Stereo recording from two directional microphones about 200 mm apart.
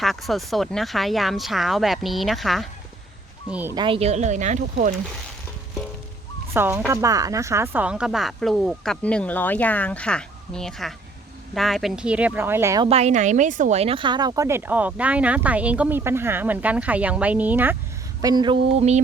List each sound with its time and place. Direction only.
0.0 s speech: centre (ahead or behind)
3.8 s speech: 25° right (ahead or behind)
6.5 s speech: 10° right (ahead or behind)
12.9 s speech: 35° right (ahead or behind); by 17.7 s 10° right (ahead or behind)
18.2 s speech: 20° right (ahead or behind)